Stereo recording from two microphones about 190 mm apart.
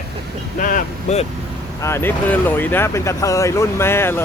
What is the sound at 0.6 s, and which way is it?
Speech, 40° left (ahead or behind).